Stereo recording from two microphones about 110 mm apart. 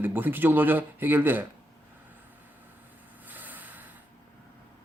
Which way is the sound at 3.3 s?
15° right (ahead or behind).